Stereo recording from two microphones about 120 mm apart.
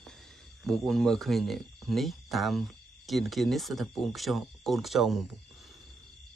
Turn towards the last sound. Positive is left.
turn(degrees=0)  # may be behind; listen again after turning